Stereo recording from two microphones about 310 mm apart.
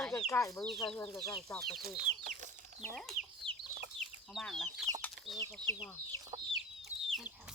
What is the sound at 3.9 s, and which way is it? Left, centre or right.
Chicken, centre.